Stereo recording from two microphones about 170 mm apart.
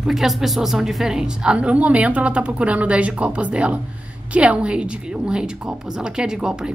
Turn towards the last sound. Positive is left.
turn(degrees=-5)  # may be behind; listen again after turning